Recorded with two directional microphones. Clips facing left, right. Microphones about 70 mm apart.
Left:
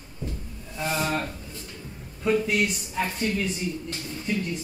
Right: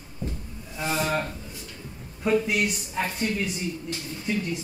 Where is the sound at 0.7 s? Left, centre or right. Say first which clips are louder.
Right 1 dB; centre.